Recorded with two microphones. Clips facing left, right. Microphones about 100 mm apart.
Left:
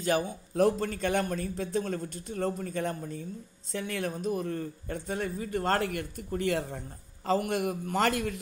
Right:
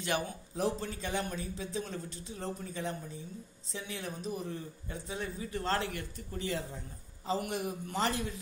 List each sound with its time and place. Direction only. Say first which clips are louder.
0.6 s a man's voice: left 8 dB; 55° left (ahead or behind)